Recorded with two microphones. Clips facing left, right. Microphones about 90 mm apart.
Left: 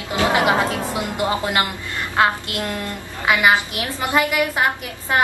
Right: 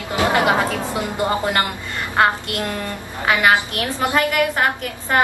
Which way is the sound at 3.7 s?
10° left (ahead or behind).